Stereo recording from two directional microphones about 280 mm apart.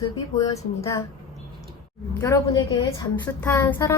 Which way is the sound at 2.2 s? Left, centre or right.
Centre.